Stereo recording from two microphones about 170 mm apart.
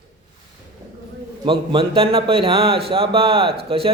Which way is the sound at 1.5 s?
30° right (ahead or behind).